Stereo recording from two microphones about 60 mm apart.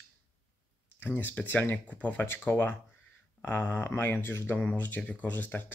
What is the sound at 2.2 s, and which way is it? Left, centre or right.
Speech, left.